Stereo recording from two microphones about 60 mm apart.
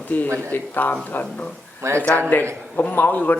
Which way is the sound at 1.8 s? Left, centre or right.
Right.